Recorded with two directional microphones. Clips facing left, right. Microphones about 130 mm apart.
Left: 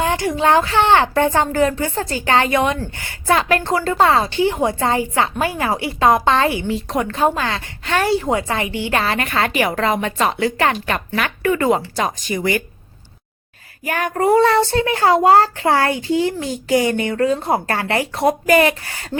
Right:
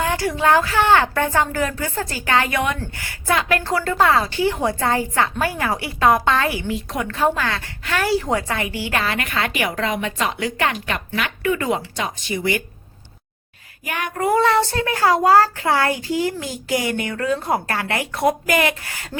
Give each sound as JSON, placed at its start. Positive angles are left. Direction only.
{"t": 0.0, "sound": "a woman's voice", "side_deg": 25}
{"t": 13.8, "sound": "a woman's voice", "side_deg": 40}